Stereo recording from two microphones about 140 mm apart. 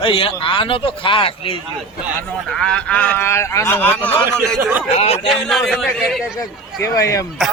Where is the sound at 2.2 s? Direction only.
5° left (ahead or behind).